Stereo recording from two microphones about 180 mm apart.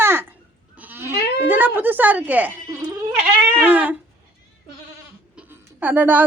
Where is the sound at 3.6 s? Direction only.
10° right (ahead or behind).